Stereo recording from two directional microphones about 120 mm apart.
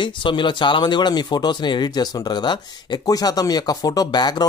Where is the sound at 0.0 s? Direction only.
40° left (ahead or behind).